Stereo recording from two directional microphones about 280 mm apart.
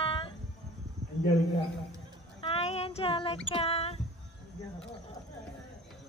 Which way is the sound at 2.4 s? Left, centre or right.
Centre.